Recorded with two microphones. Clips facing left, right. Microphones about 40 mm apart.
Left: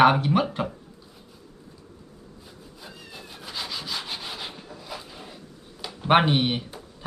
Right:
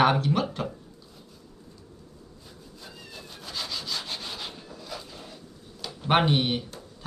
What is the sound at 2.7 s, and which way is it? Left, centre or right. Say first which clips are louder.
Rub: left 1 dB; centre.